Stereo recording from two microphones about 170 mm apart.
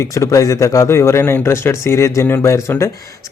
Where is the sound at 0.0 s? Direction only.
20° left (ahead or behind).